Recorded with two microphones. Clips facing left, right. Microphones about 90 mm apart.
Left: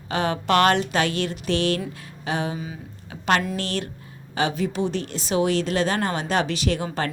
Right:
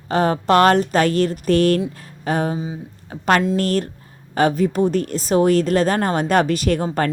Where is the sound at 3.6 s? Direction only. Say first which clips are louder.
Right 8 dB; 45° right (ahead or behind).